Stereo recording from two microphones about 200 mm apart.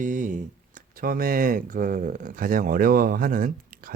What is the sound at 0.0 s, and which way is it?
Speech, 40° right (ahead or behind).